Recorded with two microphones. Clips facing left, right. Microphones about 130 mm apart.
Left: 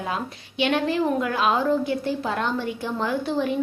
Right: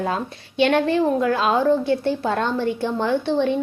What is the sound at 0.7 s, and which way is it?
A woman's voice, 30° right (ahead or behind).